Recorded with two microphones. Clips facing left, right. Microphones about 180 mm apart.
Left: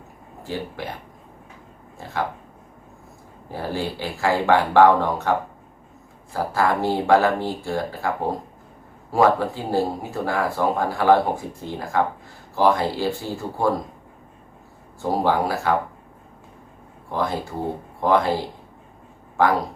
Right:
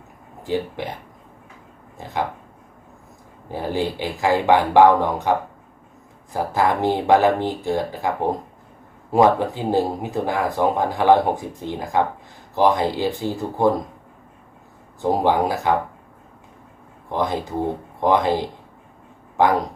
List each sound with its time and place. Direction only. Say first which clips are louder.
0.8 s speech: right 3 dB; 20° right (ahead or behind)
3.5 s speech: right 3 dB; 15° right (ahead or behind)
15.0 s speech: right 2 dB; 20° right (ahead or behind)
17.1 s speech: right 2 dB; 20° right (ahead or behind)